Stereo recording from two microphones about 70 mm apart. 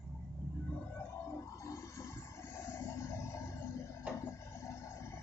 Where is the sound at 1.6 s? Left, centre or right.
Left.